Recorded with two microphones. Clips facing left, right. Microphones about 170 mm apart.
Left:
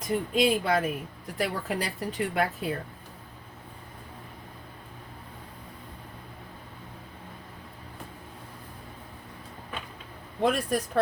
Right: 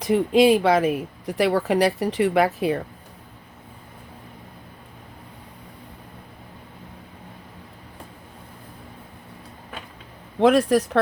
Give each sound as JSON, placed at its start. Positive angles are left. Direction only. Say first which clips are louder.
{"t": 0.0, "sound": "speech", "louder": "right 8 dB", "side_deg": -85}
{"t": 10.4, "sound": "speech", "louder": "right 9 dB", "side_deg": -80}